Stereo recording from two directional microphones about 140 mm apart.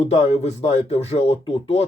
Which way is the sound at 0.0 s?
50° left (ahead or behind).